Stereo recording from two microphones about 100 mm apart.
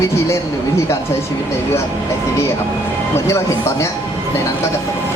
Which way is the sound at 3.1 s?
25° left (ahead or behind).